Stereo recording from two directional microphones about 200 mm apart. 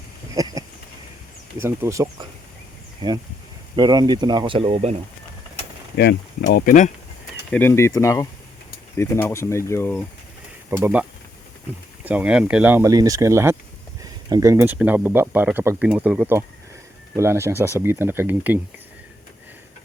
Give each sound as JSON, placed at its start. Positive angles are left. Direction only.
{"t": 0.3, "sound": "a sound", "side_deg": -15}
{"t": 1.6, "sound": "speech", "side_deg": -15}
{"t": 6.0, "sound": "speech", "side_deg": 50}
{"t": 7.5, "sound": "speech", "side_deg": 10}
{"t": 10.7, "sound": "speech", "side_deg": -10}
{"t": 12.0, "sound": "speech", "side_deg": -5}